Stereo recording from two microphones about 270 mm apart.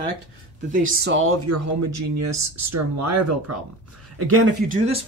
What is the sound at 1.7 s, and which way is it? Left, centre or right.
Speech, right.